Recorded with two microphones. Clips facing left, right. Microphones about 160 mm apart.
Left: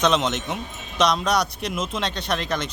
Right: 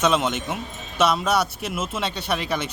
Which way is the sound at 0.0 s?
5° right (ahead or behind).